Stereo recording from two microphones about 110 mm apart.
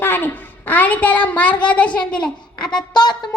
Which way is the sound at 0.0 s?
20° left (ahead or behind).